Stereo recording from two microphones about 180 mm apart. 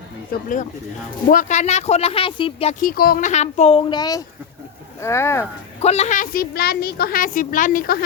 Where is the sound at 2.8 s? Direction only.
55° left (ahead or behind).